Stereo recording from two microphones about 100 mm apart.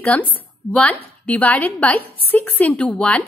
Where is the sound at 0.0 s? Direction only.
15° left (ahead or behind).